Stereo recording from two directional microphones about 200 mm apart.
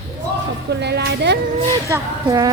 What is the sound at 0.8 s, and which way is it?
Speech, 55° right (ahead or behind).